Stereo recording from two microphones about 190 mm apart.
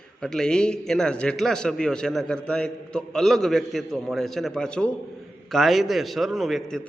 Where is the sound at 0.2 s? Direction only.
5° left (ahead or behind).